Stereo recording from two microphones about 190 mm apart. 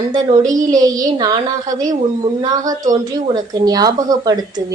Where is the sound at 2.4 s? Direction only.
20° right (ahead or behind).